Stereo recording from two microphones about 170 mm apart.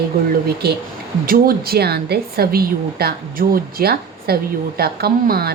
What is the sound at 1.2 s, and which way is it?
A woman's voice, 60° right (ahead or behind).